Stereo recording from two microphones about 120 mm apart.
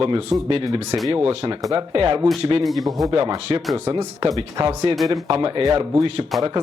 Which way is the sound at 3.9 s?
45° right (ahead or behind).